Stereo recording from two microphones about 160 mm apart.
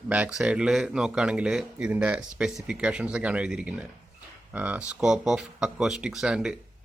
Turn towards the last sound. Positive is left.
turn(degrees=-5)  # may be behind; listen again after turning